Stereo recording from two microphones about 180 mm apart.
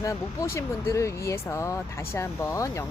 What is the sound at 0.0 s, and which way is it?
Speech, 15° left (ahead or behind).